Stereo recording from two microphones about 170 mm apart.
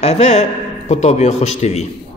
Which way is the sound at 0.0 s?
40° left (ahead or behind).